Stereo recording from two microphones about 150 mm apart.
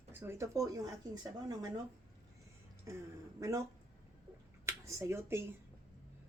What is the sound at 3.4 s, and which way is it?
Speech, 20° right (ahead or behind).